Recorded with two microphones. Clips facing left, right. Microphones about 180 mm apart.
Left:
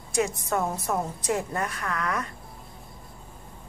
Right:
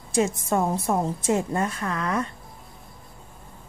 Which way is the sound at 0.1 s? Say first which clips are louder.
Right 3 dB; 30° right (ahead or behind).